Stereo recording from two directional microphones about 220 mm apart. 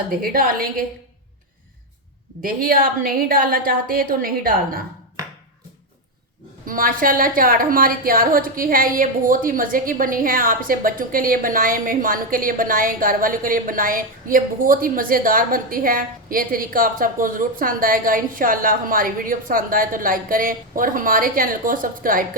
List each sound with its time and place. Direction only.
0.1 s a woman's voice: 40° right (ahead or behind)
2.4 s a woman's voice: 40° right (ahead or behind)
6.7 s a woman's voice: 40° right (ahead or behind)